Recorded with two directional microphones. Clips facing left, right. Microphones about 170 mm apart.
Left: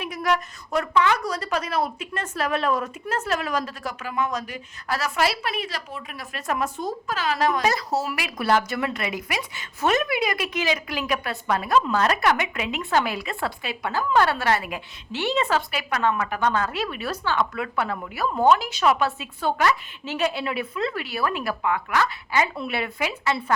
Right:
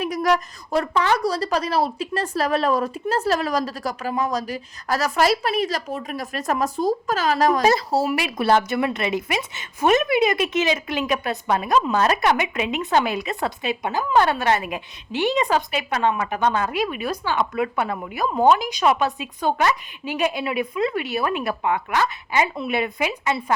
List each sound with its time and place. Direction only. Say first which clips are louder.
0.0 s a woman's voice: right 4 dB; 40° right (ahead or behind)
7.7 s a woman's voice: right 6 dB; 30° right (ahead or behind)